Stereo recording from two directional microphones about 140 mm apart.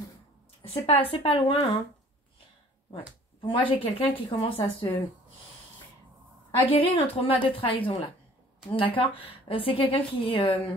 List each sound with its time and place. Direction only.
0.8 s a woman's voice: 45° left (ahead or behind)
3.3 s a woman's voice: 40° left (ahead or behind)
6.6 s a woman's voice: 40° left (ahead or behind)